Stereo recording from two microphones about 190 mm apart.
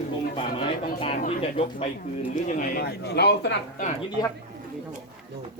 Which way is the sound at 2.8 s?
60° left (ahead or behind).